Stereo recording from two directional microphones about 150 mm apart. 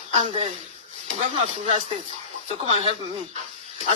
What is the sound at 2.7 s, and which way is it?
Speech, 45° right (ahead or behind).